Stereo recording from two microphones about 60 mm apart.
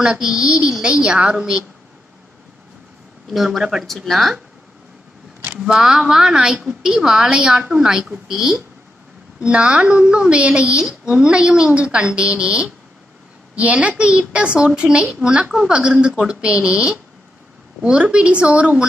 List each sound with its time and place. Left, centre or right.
0.0 s a woman's voice: centre
3.3 s speech: centre
5.6 s a woman's voice: centre